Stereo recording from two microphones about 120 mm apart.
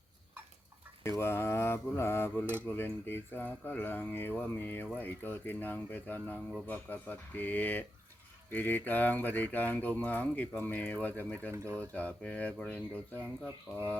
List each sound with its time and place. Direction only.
1.0 s speech: 20° left (ahead or behind)
11.5 s speech: 25° right (ahead or behind)
11.8 s speech: 10° left (ahead or behind)